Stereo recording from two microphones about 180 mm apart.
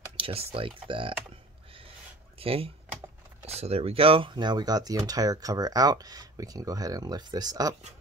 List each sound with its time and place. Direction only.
0.2 s speech: 35° right (ahead or behind)
2.3 s speech: 30° right (ahead or behind)